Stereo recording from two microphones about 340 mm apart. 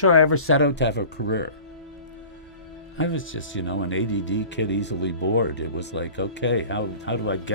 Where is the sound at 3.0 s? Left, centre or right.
Left.